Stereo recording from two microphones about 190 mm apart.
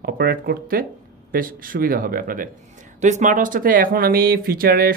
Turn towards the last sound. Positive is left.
turn(degrees=-50)  # may be behind; listen again after turning